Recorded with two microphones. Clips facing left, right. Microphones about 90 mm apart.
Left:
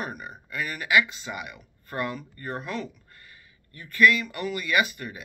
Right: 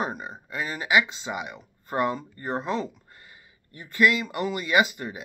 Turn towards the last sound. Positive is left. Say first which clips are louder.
# right 3 dB
turn(degrees=-20)  # may be behind; listen again after turning